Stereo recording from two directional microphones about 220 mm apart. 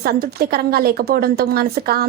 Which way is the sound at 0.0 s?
45° right (ahead or behind).